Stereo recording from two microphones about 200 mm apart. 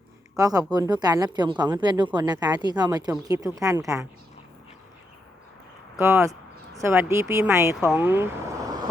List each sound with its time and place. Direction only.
0.3 s a woman's voice: 20° right (ahead or behind)
6.0 s speech: 15° right (ahead or behind)